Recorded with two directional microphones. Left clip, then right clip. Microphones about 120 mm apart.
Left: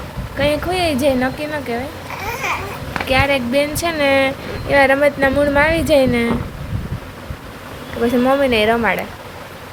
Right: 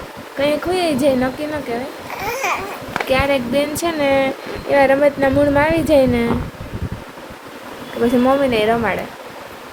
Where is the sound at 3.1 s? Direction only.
20° right (ahead or behind).